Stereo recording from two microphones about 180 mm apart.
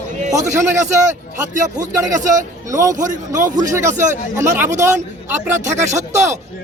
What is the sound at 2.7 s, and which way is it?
A man's voice, 15° right (ahead or behind).